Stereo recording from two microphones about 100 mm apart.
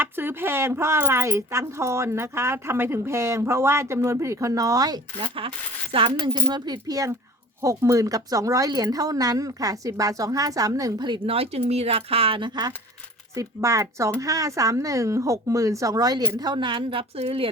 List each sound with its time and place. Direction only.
0.0 s speech: 20° right (ahead or behind); by 5.3 s 40° right (ahead or behind)
5.9 s a woman's voice: 55° right (ahead or behind); by 11.0 s 35° right (ahead or behind)
11.3 s speech: 75° right (ahead or behind); by 12.7 s 45° right (ahead or behind)
13.3 s speech: 30° right (ahead or behind); by 17.5 s 75° right (ahead or behind)